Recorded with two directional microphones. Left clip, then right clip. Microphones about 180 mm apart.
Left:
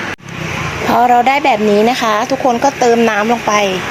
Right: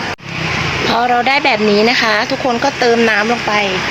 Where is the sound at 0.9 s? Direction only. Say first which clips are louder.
Left 4 dB; 35° left (ahead or behind).